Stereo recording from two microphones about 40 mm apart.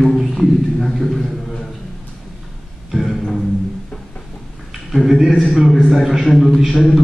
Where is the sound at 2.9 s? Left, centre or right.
Centre.